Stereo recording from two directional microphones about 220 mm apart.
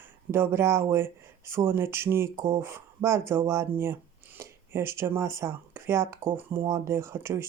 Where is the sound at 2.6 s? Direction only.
10° right (ahead or behind).